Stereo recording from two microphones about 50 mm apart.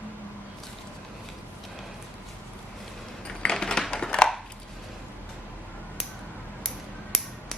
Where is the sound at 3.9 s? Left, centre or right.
Centre.